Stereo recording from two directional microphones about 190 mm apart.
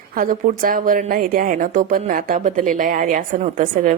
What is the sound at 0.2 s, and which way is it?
A woman's voice, 45° right (ahead or behind).